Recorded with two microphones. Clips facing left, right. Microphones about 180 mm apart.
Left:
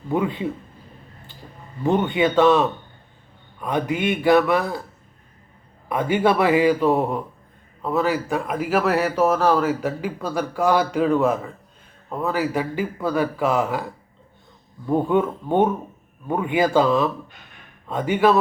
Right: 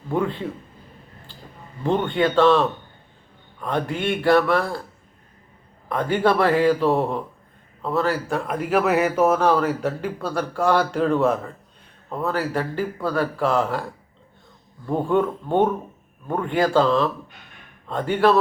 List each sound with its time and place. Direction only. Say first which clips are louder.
0.1 s a man's voice: left 1 dB; 10° left (ahead or behind)
1.8 s a man's voice: left 1 dB; 5° left (ahead or behind)
5.9 s a man's voice: left 1 dB; 10° left (ahead or behind)
14.8 s a man's voice: left 1 dB; 5° left (ahead or behind)